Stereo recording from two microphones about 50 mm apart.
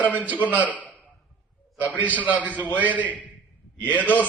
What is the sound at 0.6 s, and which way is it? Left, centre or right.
Speech, left.